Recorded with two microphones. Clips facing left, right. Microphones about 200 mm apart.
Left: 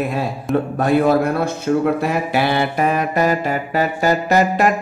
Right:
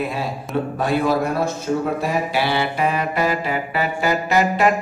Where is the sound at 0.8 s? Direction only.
55° left (ahead or behind).